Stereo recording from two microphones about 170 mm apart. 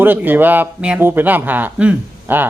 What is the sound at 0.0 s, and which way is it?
Speech, 10° right (ahead or behind).